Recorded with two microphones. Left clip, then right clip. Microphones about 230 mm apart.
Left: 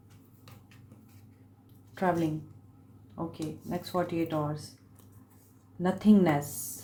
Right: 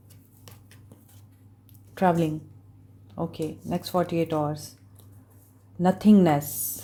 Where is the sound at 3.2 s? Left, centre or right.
Right.